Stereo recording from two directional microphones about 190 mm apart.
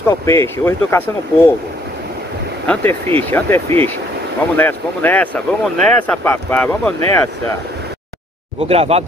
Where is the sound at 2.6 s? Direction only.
10° left (ahead or behind).